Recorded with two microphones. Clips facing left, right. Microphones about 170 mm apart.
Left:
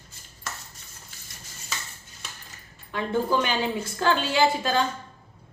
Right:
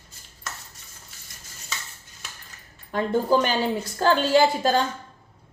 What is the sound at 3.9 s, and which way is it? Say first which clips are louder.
Speech: right 5 dB; 40° right (ahead or behind).